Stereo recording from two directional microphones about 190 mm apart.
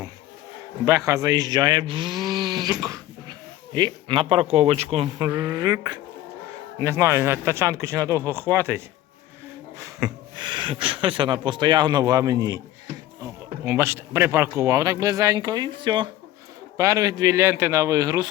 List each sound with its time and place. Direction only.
0.9 s speech: 15° right (ahead or behind)
9.8 s speech: 20° right (ahead or behind)